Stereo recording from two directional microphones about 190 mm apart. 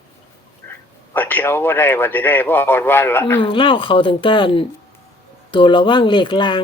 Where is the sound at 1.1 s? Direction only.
10° left (ahead or behind).